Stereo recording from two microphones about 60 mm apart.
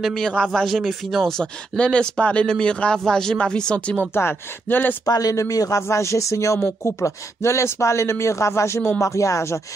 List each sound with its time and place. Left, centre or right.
0.0 s speech: centre
4.1 s speech: left
5.0 s speech: left
5.8 s speech: left
6.6 s speech: left